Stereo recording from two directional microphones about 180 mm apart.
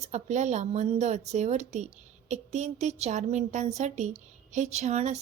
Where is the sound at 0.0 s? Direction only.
40° right (ahead or behind).